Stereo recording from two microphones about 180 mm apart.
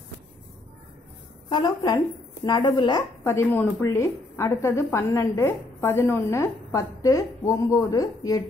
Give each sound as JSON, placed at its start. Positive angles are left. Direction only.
{"t": 1.5, "sound": "speech", "side_deg": 25}
{"t": 3.3, "sound": "a woman's voice", "side_deg": 10}